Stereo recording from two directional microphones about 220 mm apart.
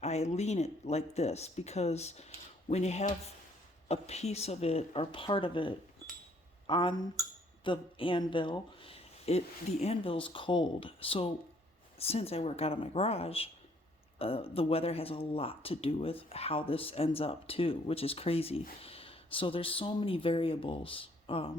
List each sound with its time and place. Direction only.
0.0 s speech: 30° left (ahead or behind)